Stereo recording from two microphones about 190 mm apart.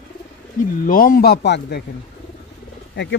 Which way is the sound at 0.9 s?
50° left (ahead or behind).